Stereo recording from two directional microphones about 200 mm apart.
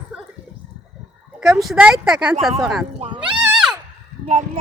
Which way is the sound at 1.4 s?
Centre (ahead or behind).